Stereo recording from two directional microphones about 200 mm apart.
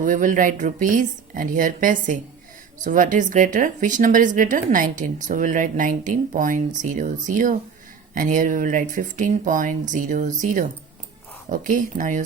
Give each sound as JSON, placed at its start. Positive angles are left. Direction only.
{"t": 0.0, "sound": "speech", "side_deg": -40}